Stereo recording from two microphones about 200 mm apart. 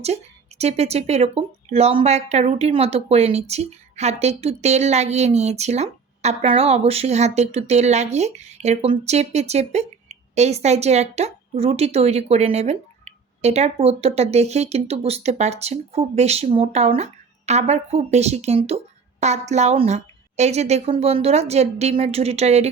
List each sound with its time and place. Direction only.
0.6 s speech: 30° right (ahead or behind)